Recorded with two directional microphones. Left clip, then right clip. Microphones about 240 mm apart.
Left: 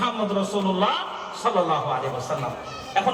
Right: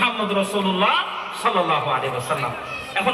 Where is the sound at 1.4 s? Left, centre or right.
Centre.